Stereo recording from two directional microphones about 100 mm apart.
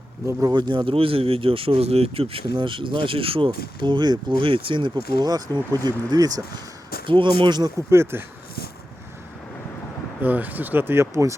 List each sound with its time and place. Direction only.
0.3 s speech: 35° right (ahead or behind)
0.5 s speech: 50° right (ahead or behind); by 2.4 s 75° right (ahead or behind)
2.5 s speech: 55° right (ahead or behind)
5.2 s speech: 40° right (ahead or behind)
7.1 s speech: 55° right (ahead or behind)
7.8 s speech: 25° right (ahead or behind)
10.2 s speech: 20° right (ahead or behind)